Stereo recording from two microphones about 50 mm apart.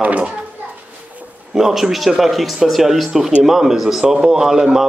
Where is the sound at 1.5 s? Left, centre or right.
Centre.